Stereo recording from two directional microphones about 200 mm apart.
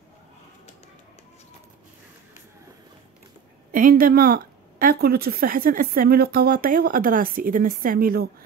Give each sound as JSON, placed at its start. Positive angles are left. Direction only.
{"t": 3.7, "sound": "a woman's voice", "side_deg": -45}